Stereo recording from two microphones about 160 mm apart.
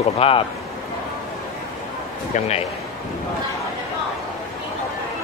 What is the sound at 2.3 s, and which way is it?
Speech, 40° left (ahead or behind).